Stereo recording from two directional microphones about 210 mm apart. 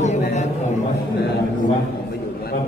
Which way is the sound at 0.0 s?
35° left (ahead or behind).